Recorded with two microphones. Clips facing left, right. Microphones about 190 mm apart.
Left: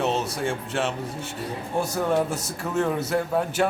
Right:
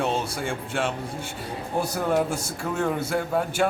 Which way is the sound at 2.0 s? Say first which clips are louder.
Even; 5° right (ahead or behind).